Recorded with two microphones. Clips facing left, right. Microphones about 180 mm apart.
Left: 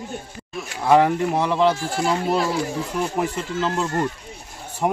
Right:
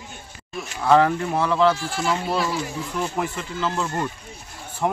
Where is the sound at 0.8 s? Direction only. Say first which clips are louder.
Left 1 dB; 15° left (ahead or behind).